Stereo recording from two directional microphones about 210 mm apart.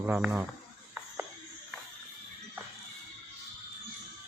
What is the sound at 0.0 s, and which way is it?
Speech, 5° right (ahead or behind).